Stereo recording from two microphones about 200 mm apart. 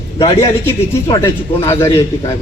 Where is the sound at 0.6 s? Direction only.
15° left (ahead or behind).